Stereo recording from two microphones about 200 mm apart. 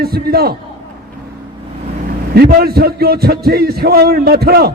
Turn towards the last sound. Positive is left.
turn(degrees=-50)  # may be behind; listen again after turning